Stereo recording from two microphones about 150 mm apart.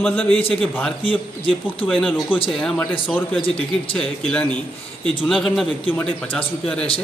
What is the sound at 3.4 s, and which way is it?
Speech, 35° left (ahead or behind).